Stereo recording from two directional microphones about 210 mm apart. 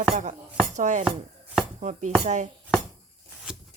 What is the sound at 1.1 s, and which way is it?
Chopping, centre (ahead or behind).